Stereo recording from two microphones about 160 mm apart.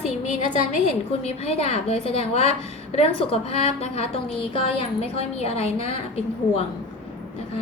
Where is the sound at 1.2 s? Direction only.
40° left (ahead or behind).